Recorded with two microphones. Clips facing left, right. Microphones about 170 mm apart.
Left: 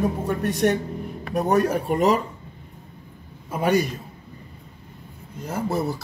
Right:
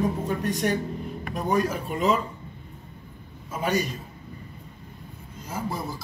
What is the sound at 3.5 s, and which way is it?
Speech, 60° left (ahead or behind).